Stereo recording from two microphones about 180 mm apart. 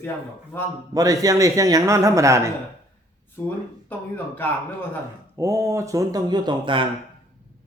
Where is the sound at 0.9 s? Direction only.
20° right (ahead or behind).